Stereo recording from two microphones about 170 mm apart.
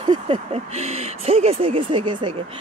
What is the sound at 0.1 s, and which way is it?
Speech, 35° right (ahead or behind).